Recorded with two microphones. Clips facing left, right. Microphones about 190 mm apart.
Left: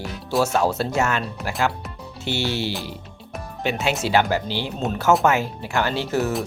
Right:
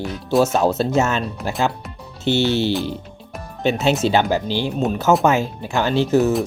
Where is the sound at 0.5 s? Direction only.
20° right (ahead or behind).